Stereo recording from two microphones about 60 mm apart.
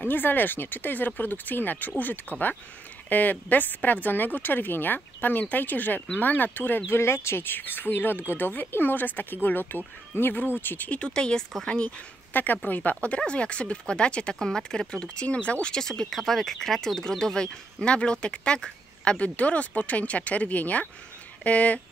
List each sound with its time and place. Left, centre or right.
0.0 s speech: left
6.9 s speech: left
10.9 s speech: centre
12.3 s speech: left
13.0 s speech: centre